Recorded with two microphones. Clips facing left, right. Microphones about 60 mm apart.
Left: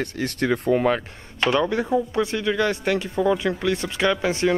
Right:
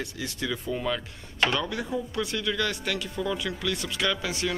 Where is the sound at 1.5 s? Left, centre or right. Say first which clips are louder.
Left 8 dB; left.